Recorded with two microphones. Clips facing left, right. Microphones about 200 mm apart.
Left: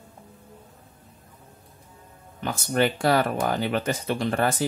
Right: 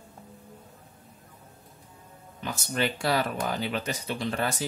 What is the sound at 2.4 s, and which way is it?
Speech, 55° left (ahead or behind).